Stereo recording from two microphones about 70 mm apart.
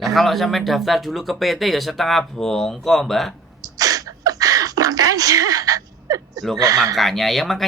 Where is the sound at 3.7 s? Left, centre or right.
Right.